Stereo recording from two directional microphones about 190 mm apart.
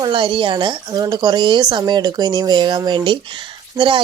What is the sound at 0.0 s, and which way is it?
Speech, 25° right (ahead or behind).